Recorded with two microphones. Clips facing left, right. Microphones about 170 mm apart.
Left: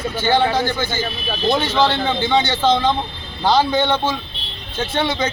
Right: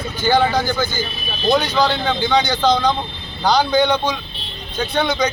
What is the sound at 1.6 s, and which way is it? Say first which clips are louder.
A man's voice: left 1 dB; centre (ahead or behind).